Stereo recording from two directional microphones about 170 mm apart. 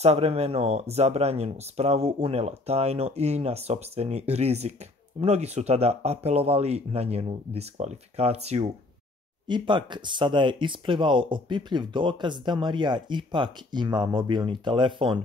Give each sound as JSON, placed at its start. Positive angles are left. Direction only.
{"t": 0.0, "sound": "speech", "side_deg": -40}
{"t": 9.5, "sound": "speech", "side_deg": -25}